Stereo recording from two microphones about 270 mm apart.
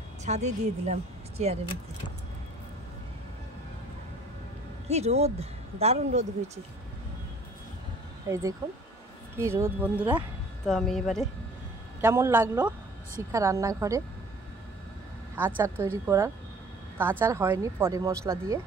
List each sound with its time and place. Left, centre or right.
0.2 s speech: right
4.8 s speech: right
8.3 s speech: centre
15.3 s speech: centre